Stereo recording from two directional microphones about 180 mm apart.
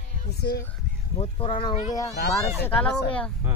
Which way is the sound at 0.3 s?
65° left (ahead or behind).